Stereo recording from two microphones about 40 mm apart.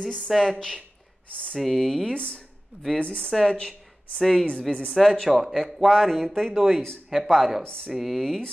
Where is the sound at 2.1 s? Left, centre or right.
Left.